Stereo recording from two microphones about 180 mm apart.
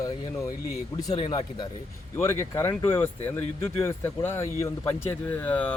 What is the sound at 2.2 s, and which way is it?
Speech, 15° left (ahead or behind).